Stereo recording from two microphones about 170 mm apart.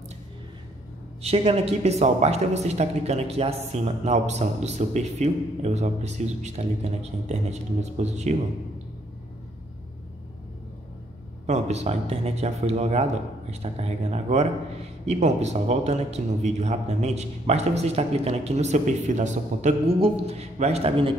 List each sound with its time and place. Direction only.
1.2 s speech: 35° right (ahead or behind)
11.4 s speech: 40° right (ahead or behind)